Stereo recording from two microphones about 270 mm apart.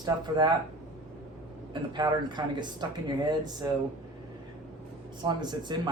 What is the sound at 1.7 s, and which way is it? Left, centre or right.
Speech, centre.